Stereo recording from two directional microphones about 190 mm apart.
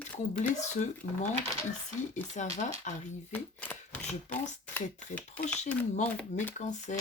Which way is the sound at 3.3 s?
5° left (ahead or behind).